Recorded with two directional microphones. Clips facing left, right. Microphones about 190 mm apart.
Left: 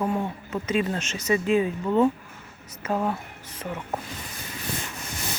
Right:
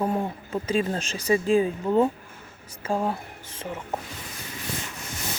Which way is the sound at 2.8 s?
30° right (ahead or behind).